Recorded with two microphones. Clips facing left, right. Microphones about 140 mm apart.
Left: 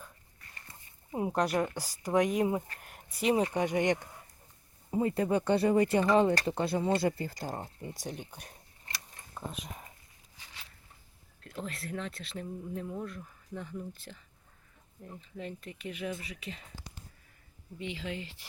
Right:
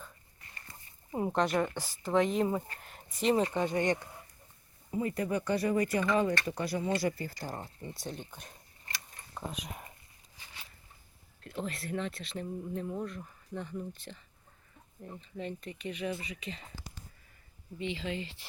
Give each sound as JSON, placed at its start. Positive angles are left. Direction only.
{"t": 1.1, "sound": "speech", "side_deg": 5}
{"t": 4.9, "sound": "speech", "side_deg": 30}
{"t": 9.3, "sound": "speech", "side_deg": 0}
{"t": 11.3, "sound": "speech", "side_deg": 0}
{"t": 15.4, "sound": "speech", "side_deg": 0}
{"t": 17.7, "sound": "speech", "side_deg": 5}